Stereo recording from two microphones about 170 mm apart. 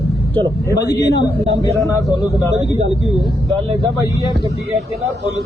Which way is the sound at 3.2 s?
Centre (ahead or behind).